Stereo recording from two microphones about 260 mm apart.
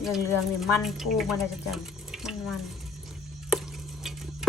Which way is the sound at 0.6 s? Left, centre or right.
Centre.